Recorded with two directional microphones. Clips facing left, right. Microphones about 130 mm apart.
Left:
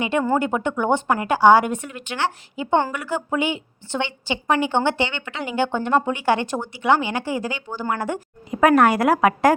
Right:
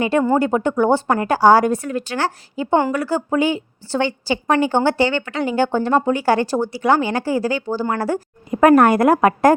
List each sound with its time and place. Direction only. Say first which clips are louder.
0.3 s speech: right 5 dB; 35° right (ahead or behind)
8.4 s a woman's voice: right 4 dB; 45° right (ahead or behind)